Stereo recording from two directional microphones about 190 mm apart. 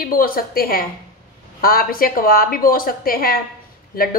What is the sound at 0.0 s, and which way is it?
Speech, 50° left (ahead or behind).